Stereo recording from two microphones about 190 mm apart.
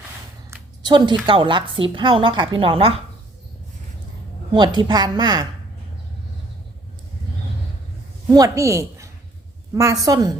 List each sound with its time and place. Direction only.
0.5 s a sound: 20° right (ahead or behind)
1.3 s a woman's voice: 25° right (ahead or behind)
4.5 s a woman's voice: 25° right (ahead or behind)
8.3 s a woman's voice: 15° right (ahead or behind)